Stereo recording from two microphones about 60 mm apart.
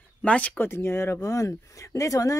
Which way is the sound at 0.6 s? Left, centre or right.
Left.